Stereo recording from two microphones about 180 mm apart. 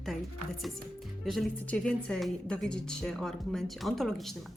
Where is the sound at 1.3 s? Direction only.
5° left (ahead or behind).